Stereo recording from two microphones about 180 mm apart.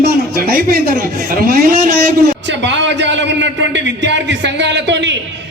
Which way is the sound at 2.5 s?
80° right.